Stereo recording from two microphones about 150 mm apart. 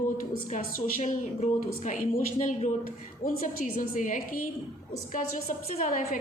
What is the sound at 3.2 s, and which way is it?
A woman's voice, 60° left (ahead or behind).